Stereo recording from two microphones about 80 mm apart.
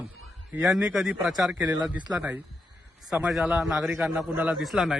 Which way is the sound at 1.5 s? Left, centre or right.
Centre.